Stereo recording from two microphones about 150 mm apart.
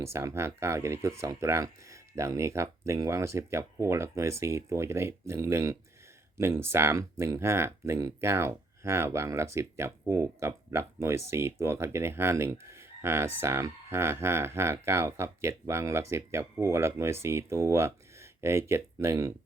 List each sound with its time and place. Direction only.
0.0 s speech: 20° right (ahead or behind)